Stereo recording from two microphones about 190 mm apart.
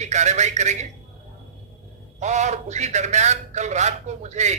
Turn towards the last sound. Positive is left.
turn(degrees=-35)  # may be behind; listen again after turning